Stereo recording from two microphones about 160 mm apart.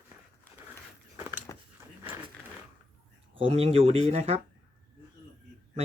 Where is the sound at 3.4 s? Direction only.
35° right (ahead or behind).